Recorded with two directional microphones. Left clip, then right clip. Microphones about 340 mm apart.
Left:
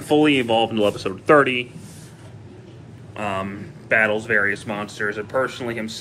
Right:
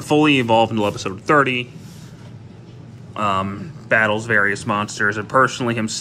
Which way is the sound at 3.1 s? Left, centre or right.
Centre.